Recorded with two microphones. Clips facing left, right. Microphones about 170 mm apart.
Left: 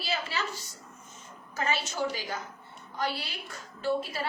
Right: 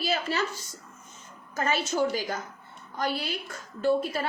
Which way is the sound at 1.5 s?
45° right (ahead or behind).